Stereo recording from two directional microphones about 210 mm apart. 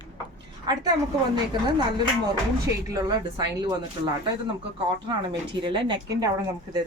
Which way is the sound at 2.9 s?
20° right (ahead or behind).